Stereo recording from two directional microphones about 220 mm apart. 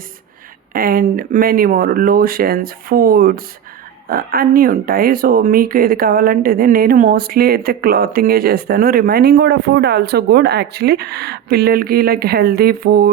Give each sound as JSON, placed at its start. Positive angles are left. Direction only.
{"t": 0.7, "sound": "speech", "side_deg": -40}